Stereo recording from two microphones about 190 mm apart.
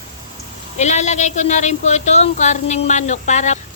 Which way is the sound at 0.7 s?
40° left (ahead or behind).